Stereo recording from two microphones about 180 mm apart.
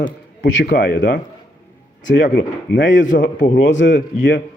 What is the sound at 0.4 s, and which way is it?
Speech, 75° left (ahead or behind).